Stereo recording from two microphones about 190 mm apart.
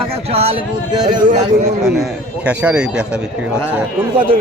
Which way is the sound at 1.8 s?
Centre (ahead or behind).